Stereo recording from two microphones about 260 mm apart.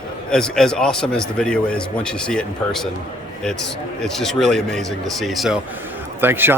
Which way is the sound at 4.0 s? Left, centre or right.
Centre.